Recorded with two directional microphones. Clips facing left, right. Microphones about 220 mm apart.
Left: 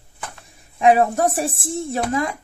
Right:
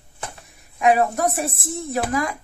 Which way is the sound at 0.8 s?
30° left (ahead or behind).